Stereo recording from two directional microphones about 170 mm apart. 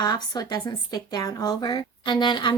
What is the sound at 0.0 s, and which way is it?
A woman's voice, 25° left (ahead or behind).